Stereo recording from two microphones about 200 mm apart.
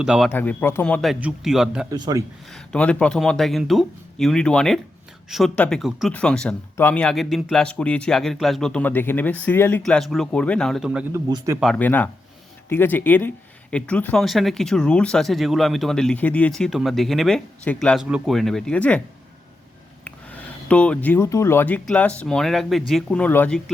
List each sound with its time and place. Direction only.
0.0 s speech: 5° right (ahead or behind)
0.3 s speech: 10° left (ahead or behind)
1.9 s speech: 20° right (ahead or behind)
2.5 s speech: 5° left (ahead or behind)
11.1 s speech: 15° right (ahead or behind)
11.6 s speech: 5° left (ahead or behind)
20.1 s speech: 5° left (ahead or behind)